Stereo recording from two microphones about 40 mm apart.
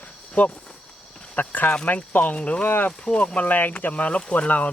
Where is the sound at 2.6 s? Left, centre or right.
Left.